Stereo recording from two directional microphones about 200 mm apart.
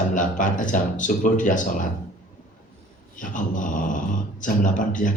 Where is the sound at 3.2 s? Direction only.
40° left (ahead or behind).